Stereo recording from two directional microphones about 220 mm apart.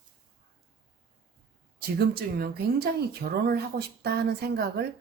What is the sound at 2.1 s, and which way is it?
Speech, 45° right (ahead or behind).